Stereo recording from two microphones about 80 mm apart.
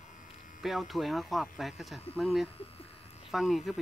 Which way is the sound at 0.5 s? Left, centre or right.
Centre.